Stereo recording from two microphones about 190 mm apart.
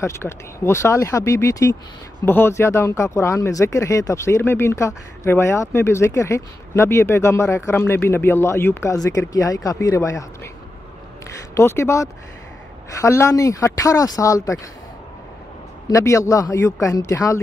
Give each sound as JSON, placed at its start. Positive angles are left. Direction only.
{"t": 0.0, "sound": "speech", "side_deg": 15}
{"t": 11.5, "sound": "speech", "side_deg": 15}
{"t": 15.9, "sound": "speech", "side_deg": 15}